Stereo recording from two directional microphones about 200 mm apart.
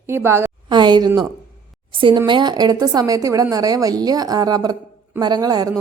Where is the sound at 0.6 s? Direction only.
20° right (ahead or behind).